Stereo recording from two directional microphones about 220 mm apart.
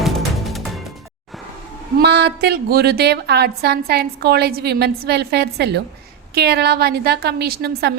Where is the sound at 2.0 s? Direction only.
50° right (ahead or behind).